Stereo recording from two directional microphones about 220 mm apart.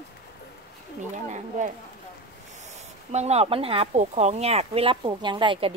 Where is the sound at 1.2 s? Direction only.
35° right (ahead or behind).